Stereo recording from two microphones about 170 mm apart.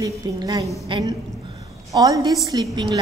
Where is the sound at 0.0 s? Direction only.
20° right (ahead or behind).